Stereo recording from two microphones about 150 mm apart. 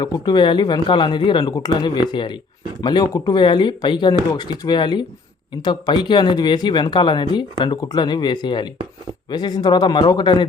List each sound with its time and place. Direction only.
0.0 s speech: 25° left (ahead or behind)